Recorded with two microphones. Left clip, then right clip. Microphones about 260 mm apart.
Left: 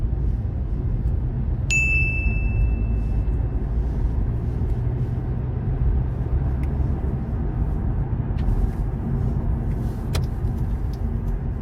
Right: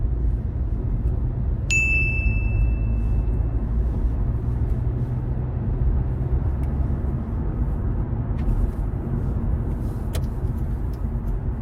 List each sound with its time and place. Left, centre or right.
1.6 s ding: centre